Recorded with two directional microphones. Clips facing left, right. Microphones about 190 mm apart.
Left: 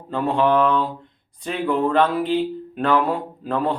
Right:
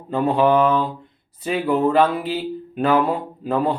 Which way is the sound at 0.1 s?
5° right (ahead or behind).